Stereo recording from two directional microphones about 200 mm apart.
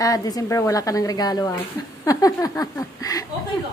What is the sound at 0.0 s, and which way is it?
A woman's voice, 20° left (ahead or behind).